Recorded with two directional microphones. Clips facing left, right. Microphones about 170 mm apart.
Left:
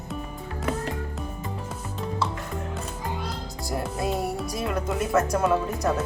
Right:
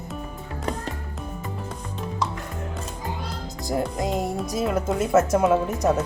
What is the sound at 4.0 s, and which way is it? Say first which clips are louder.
Speech: right 2 dB; 15° right (ahead or behind).